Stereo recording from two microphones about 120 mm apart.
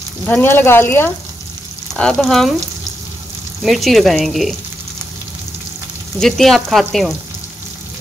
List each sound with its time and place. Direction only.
0.3 s speech: 15° left (ahead or behind)
2.0 s speech: 5° left (ahead or behind)
3.6 s speech: centre (ahead or behind)
6.1 s speech: centre (ahead or behind)